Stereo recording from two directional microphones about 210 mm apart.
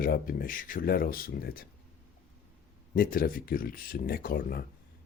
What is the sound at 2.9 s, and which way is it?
Speech, 45° left (ahead or behind).